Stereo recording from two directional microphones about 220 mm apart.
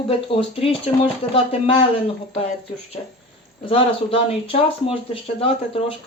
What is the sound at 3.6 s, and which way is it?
Speech, 25° left (ahead or behind).